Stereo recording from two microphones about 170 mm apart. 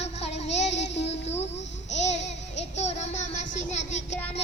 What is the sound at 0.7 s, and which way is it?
Child singing, 90° left.